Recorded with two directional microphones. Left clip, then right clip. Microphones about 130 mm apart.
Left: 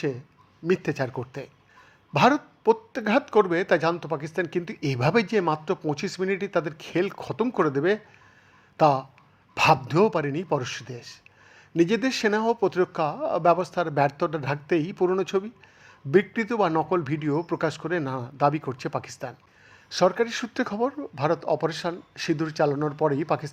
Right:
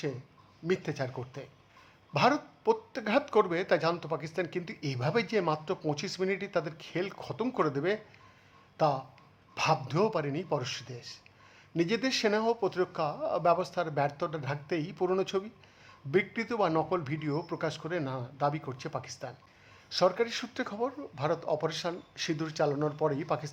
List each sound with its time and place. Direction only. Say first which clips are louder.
0.7 s speech: left 7 dB; 30° left (ahead or behind)
5.2 s speech: left 6 dB; 30° left (ahead or behind)
8.8 s speech: left 8 dB; 40° left (ahead or behind)